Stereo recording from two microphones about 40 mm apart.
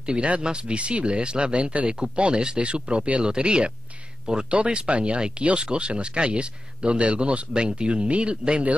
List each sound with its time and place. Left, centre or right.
0.0 s speech: right